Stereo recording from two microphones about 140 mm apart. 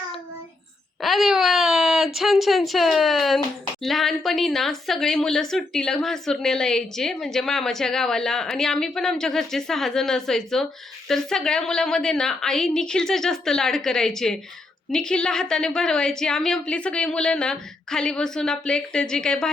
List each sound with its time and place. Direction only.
1.0 s a woman's voice: centre (ahead or behind)